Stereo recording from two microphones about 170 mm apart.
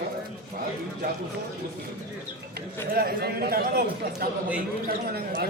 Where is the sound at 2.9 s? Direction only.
60° right (ahead or behind).